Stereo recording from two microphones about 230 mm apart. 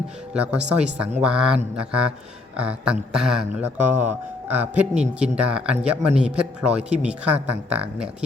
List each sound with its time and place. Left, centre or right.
0.3 s speech: centre